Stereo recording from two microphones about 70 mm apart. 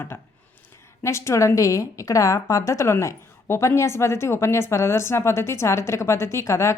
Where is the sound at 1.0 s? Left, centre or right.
Left.